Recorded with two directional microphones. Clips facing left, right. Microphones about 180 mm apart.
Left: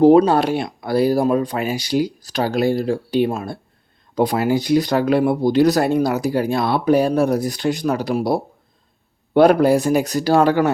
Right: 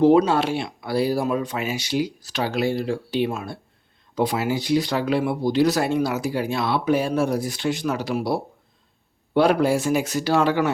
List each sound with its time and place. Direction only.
0.0 s speech: 45° left (ahead or behind)